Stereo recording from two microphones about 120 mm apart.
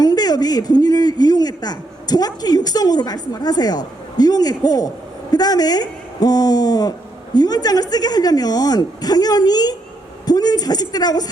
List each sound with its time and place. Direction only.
0.0 s speech: 35° left (ahead or behind)